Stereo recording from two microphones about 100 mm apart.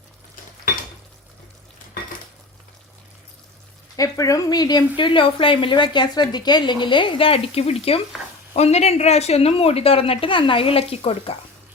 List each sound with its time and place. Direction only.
3.9 s speech: 35° left (ahead or behind)
4.9 s a woman's voice: 60° left (ahead or behind); by 11.3 s 90° left